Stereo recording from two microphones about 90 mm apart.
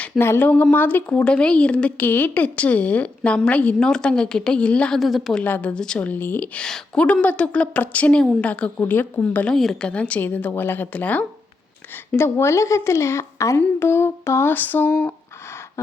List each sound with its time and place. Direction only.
0.0 s speech: 25° left (ahead or behind)
4.9 s a woman's voice: centre (ahead or behind)
5.4 s speech: 15° left (ahead or behind)
6.6 s speech: 10° left (ahead or behind)
8.8 s a sound: 25° left (ahead or behind)
9.2 s speech: 15° left (ahead or behind)
9.6 s a woman's voice: 5° left (ahead or behind)
9.9 s speech: 15° left (ahead or behind)
12.1 s a woman's voice: 30° left (ahead or behind)
13.6 s a sound: 25° left (ahead or behind)